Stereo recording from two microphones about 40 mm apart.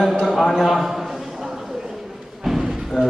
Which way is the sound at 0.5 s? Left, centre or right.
Centre.